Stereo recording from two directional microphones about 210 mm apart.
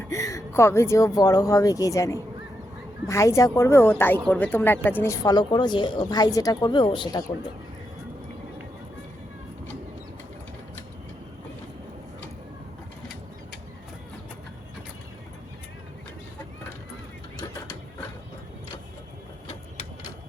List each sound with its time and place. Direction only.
0.1 s speech: 15° left (ahead or behind)